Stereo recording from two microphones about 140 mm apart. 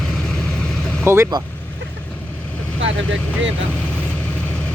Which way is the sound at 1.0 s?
20° right (ahead or behind).